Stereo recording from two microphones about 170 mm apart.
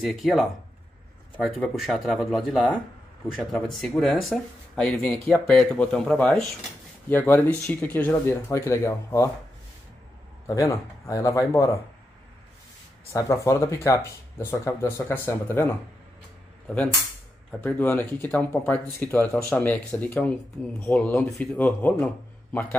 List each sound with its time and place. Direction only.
0.0 s speech: centre (ahead or behind); by 9.3 s 15° left (ahead or behind)
10.4 s a man's voice: 20° left (ahead or behind)
13.1 s speech: 15° left (ahead or behind)